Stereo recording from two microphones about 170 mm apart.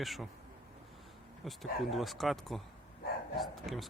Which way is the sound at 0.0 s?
Centre (ahead or behind).